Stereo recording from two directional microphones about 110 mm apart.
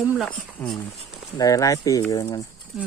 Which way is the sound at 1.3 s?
30° left (ahead or behind).